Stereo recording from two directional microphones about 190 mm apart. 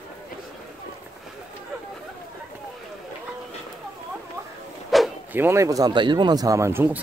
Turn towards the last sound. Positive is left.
turn(degrees=-10)  # may be behind; listen again after turning